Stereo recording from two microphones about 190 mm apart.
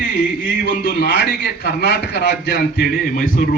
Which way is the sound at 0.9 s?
55° left (ahead or behind).